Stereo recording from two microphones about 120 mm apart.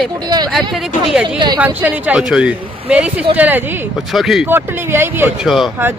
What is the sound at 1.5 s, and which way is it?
A woman's voice, 15° right (ahead or behind).